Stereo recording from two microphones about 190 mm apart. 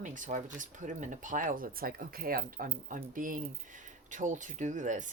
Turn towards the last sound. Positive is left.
turn(degrees=-40)  # may be behind; listen again after turning